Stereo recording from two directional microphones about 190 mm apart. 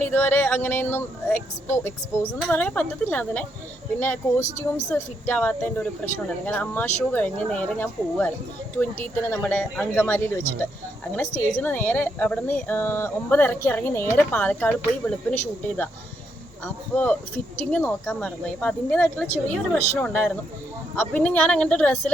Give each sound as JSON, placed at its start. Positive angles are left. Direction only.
{"t": 0.0, "sound": "speech", "side_deg": 10}